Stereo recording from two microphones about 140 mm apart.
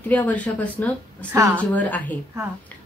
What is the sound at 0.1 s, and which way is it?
A woman's voice, 10° left (ahead or behind).